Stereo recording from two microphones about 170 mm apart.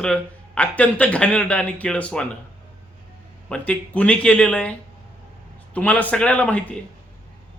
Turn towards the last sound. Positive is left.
turn(degrees=5)  # may be behind; listen again after turning